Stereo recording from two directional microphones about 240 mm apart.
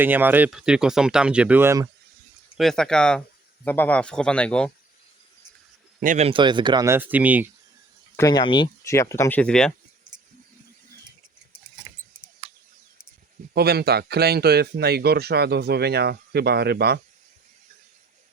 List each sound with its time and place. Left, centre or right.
0.0 s speech: centre
2.6 s speech: centre
6.0 s speech: right; by 7.5 s centre
8.1 s speech: centre
12.4 s a sound: right
13.5 s speech: right